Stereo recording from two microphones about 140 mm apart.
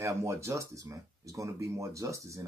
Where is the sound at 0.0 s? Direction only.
20° right (ahead or behind).